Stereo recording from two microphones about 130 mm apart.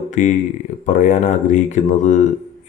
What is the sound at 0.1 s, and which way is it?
Speech, 75° left (ahead or behind).